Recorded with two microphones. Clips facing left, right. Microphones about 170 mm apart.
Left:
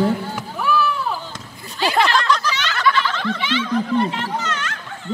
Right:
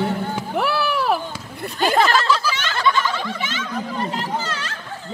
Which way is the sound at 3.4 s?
45° right (ahead or behind).